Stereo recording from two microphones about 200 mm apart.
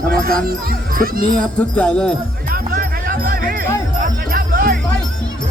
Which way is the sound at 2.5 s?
45° right (ahead or behind).